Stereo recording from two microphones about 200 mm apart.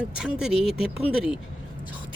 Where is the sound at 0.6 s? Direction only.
30° left (ahead or behind).